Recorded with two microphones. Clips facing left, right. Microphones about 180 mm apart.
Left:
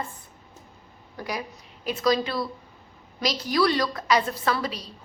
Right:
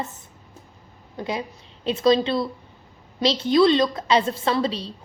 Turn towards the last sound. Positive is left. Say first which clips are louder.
# right 4 dB
turn(degrees=-25)  # may be behind; listen again after turning